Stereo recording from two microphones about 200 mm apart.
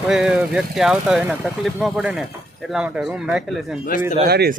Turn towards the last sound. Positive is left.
turn(degrees=-50)  # may be behind; listen again after turning